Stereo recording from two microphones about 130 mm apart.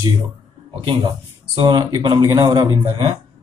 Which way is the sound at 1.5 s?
35° right (ahead or behind).